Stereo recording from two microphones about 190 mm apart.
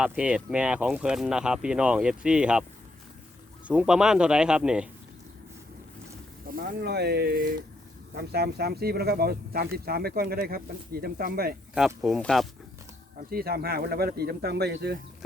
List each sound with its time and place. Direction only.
0.0 s speech: 5° right (ahead or behind)
3.7 s speech: 5° right (ahead or behind)
6.5 s speech: 50° right (ahead or behind)
12.0 s speech: centre (ahead or behind)
13.3 s speech: 55° right (ahead or behind)